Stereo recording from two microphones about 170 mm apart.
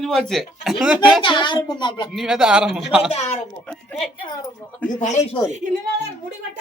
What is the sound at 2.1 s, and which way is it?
Speech, 5° right (ahead or behind).